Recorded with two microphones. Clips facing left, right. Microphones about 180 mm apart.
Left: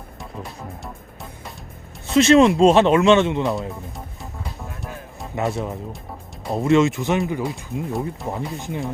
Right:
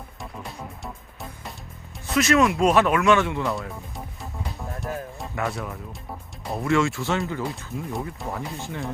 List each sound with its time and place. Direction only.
2.0 s speech: 25° left (ahead or behind)
5.3 s speech: 25° left (ahead or behind)
7.4 s speech: centre (ahead or behind)
8.3 s speech: 20° left (ahead or behind)